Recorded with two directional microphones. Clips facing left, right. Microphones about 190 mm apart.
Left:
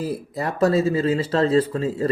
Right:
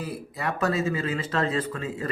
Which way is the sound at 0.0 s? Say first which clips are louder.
Left 5 dB; 35° left (ahead or behind).